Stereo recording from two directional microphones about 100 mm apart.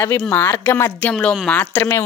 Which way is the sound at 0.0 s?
20° left (ahead or behind).